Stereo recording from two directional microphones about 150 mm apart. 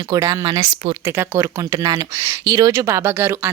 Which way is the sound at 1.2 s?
20° right (ahead or behind).